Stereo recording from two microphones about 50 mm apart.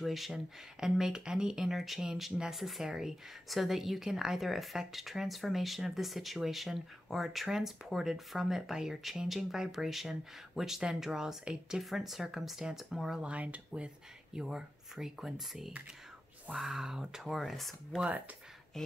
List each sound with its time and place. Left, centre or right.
0.0 s a woman's voice: centre
13.2 s a woman's voice: right; by 17.7 s centre